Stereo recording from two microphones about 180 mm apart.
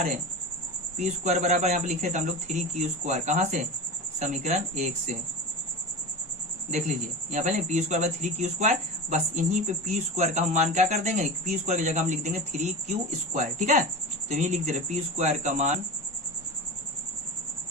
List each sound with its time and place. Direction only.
0.9 s speech: 40° right (ahead or behind)
6.7 s speech: 40° right (ahead or behind)